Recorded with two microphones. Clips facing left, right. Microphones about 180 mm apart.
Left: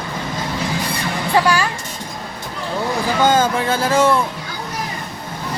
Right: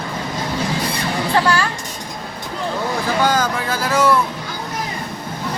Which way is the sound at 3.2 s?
25° left (ahead or behind).